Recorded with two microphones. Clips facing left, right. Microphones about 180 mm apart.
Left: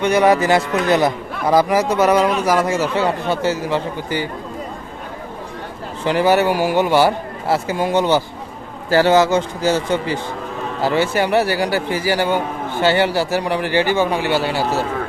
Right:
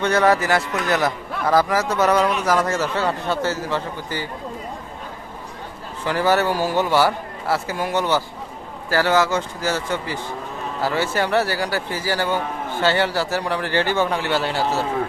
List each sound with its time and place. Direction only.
0.0 s a man's voice: 15° left (ahead or behind)
6.1 s a man's voice: 15° left (ahead or behind)